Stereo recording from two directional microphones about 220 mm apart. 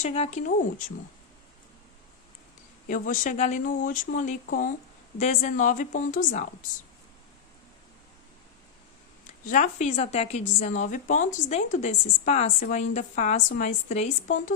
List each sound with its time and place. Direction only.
0.0 s speech: 30° left (ahead or behind)
2.9 s a woman's voice: 35° left (ahead or behind)
9.2 s a woman's voice: 35° left (ahead or behind)